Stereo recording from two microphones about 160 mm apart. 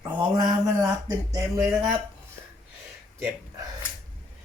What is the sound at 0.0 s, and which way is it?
Mantra, 30° right (ahead or behind).